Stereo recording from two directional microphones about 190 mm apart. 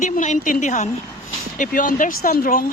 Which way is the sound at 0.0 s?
40° left (ahead or behind).